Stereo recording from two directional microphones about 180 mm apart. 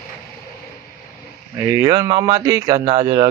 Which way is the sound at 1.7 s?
15° right (ahead or behind).